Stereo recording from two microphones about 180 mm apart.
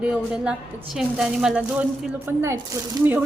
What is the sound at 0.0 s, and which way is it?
A child's voice, 5° right (ahead or behind).